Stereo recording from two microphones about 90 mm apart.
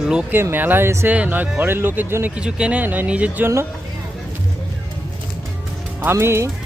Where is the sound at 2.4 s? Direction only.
10° right (ahead or behind).